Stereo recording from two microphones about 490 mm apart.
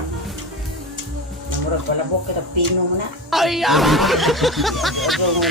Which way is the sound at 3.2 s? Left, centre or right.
Centre.